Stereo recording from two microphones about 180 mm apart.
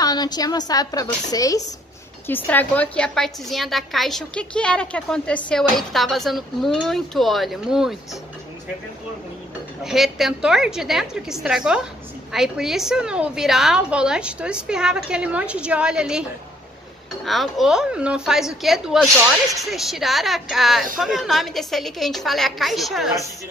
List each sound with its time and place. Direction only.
0.0 s a woman's voice: 20° left (ahead or behind); by 8.2 s centre (ahead or behind)
9.8 s a woman's voice: centre (ahead or behind)